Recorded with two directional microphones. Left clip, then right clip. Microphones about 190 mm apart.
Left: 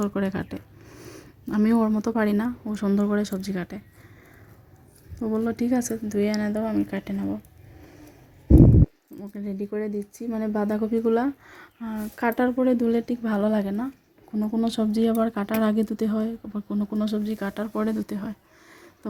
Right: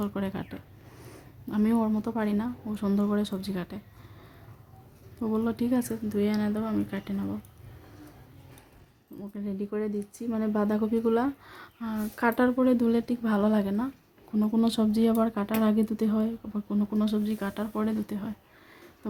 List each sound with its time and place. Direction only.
0.0 s speech: 25° left (ahead or behind)
5.2 s speech: 15° left (ahead or behind)
9.2 s speech: 25° left (ahead or behind)
15.4 s speech: 30° left (ahead or behind)